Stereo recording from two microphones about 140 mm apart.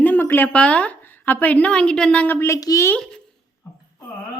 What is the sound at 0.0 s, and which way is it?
A woman's voice, 10° left (ahead or behind).